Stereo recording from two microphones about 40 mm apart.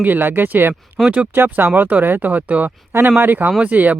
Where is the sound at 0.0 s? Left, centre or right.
Right.